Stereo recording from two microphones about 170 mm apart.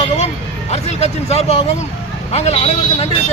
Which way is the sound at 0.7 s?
40° left (ahead or behind).